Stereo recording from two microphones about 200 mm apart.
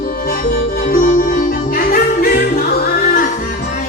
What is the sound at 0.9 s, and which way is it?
Music, 45° left (ahead or behind).